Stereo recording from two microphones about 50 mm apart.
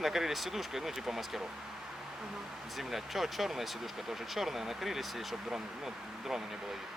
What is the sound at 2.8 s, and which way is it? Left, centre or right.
Speech, centre.